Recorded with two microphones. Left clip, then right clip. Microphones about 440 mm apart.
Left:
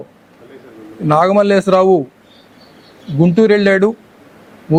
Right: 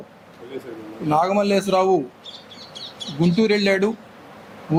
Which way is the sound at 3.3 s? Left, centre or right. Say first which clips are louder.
Left 8 dB; left.